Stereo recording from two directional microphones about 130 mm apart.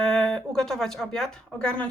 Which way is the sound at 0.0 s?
5° left (ahead or behind).